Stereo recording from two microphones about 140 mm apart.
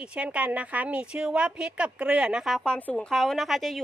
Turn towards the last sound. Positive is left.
turn(degrees=0)  # may be behind; listen again after turning